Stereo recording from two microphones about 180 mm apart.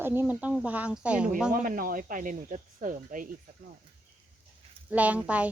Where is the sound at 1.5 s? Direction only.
50° right (ahead or behind).